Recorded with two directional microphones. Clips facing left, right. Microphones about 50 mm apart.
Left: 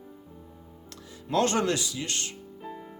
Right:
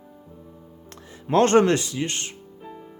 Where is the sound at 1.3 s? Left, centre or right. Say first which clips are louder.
Right 8 dB; right.